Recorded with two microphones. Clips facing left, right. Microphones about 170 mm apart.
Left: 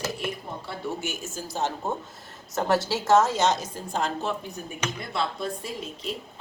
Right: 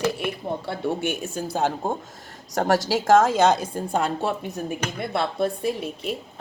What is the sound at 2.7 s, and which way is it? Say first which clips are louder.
Speech: right 3 dB; 90° right.